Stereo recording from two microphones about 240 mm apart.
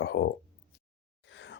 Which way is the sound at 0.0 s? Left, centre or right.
Left.